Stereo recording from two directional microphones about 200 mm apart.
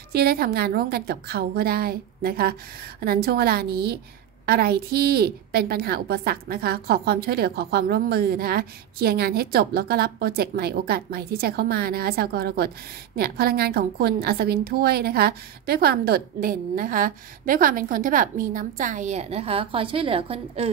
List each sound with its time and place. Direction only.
0.1 s a woman's voice: 50° right (ahead or behind); by 20.7 s 30° right (ahead or behind)